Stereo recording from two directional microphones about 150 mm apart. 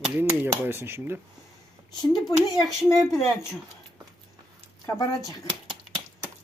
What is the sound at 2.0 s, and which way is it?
Speech, 25° left (ahead or behind).